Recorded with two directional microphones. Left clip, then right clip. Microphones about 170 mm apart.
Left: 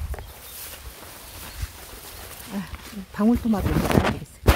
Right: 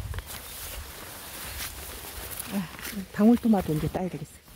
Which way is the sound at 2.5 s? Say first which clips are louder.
Even; centre (ahead or behind).